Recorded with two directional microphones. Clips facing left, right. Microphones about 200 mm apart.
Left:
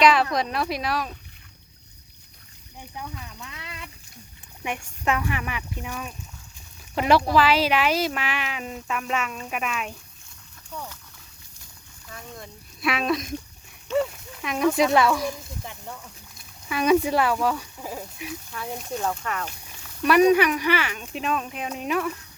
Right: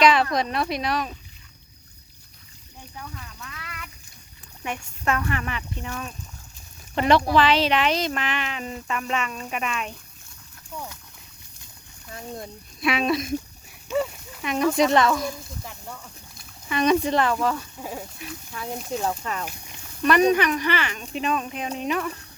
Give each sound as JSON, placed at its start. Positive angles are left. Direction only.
{"t": 0.0, "sound": "speech", "side_deg": 0}
{"t": 2.8, "sound": "speech", "side_deg": 15}
{"t": 10.7, "sound": "speech", "side_deg": -10}
{"t": 12.1, "sound": "speech", "side_deg": -30}
{"t": 12.8, "sound": "speech", "side_deg": 0}
{"t": 16.4, "sound": "speech", "side_deg": 5}
{"t": 18.5, "sound": "speech", "side_deg": -5}
{"t": 19.2, "sound": "speech", "side_deg": -25}
{"t": 20.0, "sound": "speech", "side_deg": 10}